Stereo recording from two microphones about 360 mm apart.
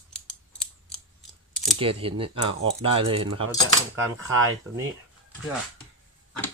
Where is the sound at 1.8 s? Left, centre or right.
Centre.